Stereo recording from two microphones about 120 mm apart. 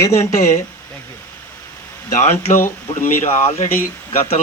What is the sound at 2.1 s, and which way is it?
Speech, 90° left.